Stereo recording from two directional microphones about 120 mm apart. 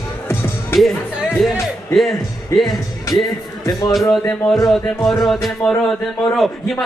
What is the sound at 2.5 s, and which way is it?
Speech, 25° left (ahead or behind).